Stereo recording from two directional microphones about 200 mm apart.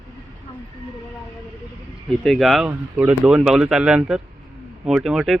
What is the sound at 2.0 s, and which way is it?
Speech, centre (ahead or behind).